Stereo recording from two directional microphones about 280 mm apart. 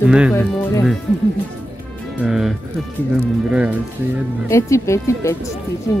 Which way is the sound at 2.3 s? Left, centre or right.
Centre.